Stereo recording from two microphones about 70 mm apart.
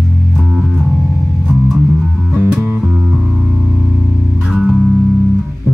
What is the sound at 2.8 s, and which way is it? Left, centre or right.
Music, centre.